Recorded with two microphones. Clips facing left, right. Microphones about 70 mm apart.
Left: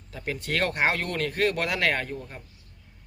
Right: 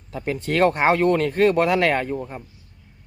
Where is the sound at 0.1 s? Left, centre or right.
Right.